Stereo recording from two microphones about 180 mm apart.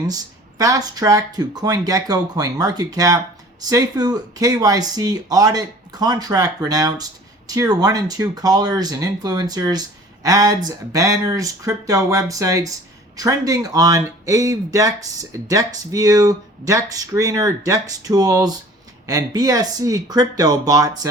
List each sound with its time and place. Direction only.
0.6 s speech: 20° right (ahead or behind)